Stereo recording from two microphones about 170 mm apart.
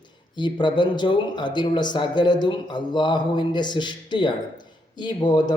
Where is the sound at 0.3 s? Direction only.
25° left (ahead or behind).